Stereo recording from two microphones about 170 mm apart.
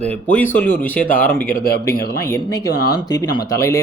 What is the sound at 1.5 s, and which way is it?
Speech, 65° left (ahead or behind).